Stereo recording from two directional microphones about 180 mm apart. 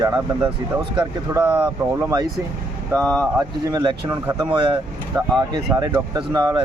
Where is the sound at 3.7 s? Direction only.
20° right (ahead or behind).